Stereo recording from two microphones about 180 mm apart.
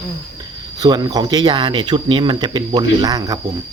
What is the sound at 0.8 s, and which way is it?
A man's voice, 20° right (ahead or behind).